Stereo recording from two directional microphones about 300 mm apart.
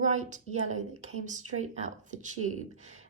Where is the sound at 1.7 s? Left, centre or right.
Right.